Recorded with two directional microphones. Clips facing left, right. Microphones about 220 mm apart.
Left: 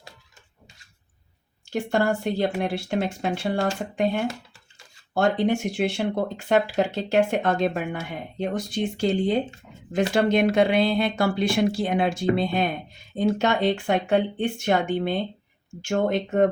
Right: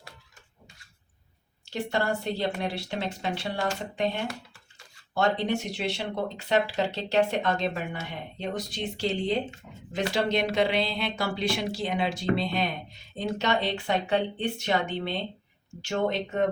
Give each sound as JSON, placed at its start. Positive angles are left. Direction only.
{"t": 1.7, "sound": "speech", "side_deg": 50}
{"t": 5.1, "sound": "speech", "side_deg": 50}